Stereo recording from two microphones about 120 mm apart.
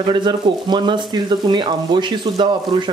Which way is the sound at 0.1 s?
40° right (ahead or behind).